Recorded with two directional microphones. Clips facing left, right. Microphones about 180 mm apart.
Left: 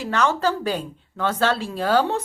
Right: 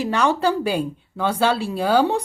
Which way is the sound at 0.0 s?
15° right (ahead or behind).